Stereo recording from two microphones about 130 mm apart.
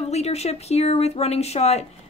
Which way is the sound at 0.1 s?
55° left (ahead or behind).